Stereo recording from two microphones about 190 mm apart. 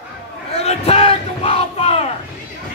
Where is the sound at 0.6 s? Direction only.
30° left (ahead or behind).